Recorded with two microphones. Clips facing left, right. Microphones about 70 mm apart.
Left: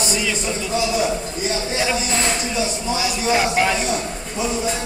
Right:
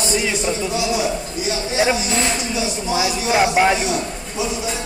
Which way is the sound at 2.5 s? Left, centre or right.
Centre.